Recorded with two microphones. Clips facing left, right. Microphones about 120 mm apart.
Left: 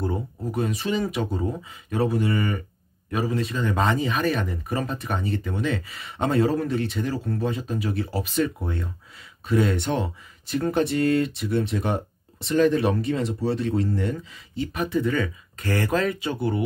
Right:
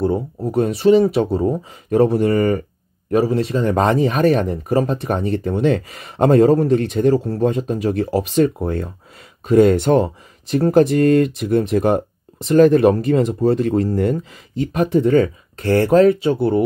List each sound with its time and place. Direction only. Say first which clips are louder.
0.0 s speech: right 9 dB; 30° right (ahead or behind); by 7.2 s 45° right (ahead or behind)
7.2 s speech: right 8 dB; 35° right (ahead or behind)